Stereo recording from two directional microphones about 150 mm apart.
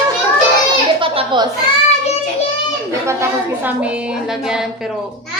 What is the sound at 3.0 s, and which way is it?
A woman's voice, 15° right (ahead or behind).